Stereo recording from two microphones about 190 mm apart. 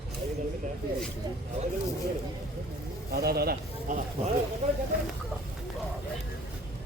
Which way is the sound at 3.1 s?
55° right (ahead or behind).